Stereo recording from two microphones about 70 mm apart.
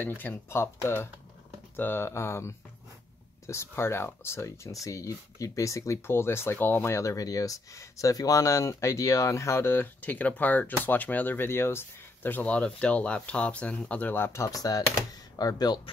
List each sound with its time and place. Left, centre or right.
0.2 s speech: left
14.5 s speech: left
15.3 s speech: left